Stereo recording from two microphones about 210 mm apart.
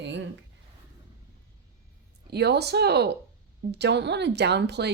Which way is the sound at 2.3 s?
50° right (ahead or behind).